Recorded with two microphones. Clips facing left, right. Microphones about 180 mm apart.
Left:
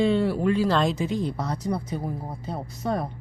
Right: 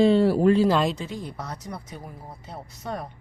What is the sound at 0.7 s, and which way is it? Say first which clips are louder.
Speech: right 1 dB; 5° right (ahead or behind).